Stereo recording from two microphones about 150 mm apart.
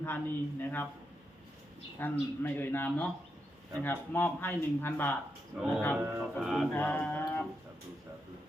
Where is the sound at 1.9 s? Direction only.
15° left (ahead or behind).